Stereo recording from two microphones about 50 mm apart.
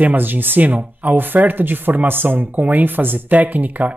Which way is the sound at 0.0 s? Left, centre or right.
Right.